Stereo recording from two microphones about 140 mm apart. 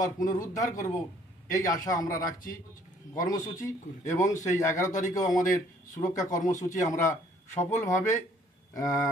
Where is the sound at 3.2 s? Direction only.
25° left (ahead or behind).